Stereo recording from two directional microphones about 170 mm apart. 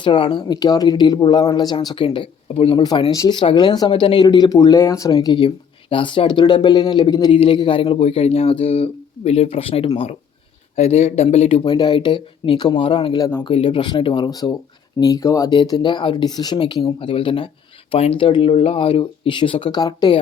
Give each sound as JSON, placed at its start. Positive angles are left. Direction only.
{"t": 0.0, "sound": "speech", "side_deg": 30}